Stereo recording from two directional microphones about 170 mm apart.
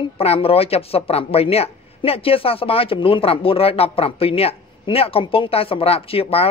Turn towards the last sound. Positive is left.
turn(degrees=35)  # may be behind; listen again after turning